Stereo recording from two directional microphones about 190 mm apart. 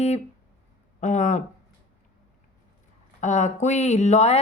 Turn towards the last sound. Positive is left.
turn(degrees=35)  # may be behind; listen again after turning